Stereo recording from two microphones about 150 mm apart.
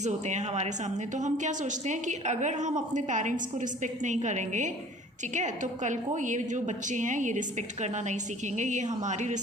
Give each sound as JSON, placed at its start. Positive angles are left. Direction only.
{"t": 0.0, "sound": "a woman's voice", "side_deg": -50}